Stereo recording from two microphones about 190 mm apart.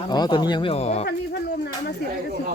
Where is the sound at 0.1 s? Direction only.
20° left (ahead or behind).